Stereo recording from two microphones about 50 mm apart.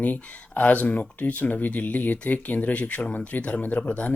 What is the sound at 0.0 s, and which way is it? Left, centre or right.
Speech, left.